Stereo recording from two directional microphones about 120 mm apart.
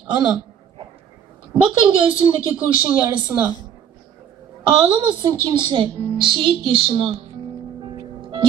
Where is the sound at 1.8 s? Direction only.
45° right (ahead or behind).